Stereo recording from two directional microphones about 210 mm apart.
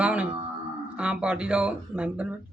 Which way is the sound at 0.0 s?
5° right (ahead or behind).